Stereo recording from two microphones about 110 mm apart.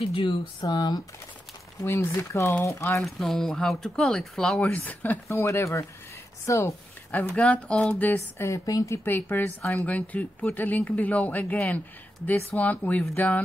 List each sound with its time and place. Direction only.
0.0 s speech: 55° left (ahead or behind)
1.8 s speech: 30° left (ahead or behind)
3.0 s speech: 5° left (ahead or behind)
4.6 s speech: 15° left (ahead or behind)
5.4 s speech: 25° left (ahead or behind)
7.3 s speech: 10° left (ahead or behind)
8.5 s speech: 30° left (ahead or behind)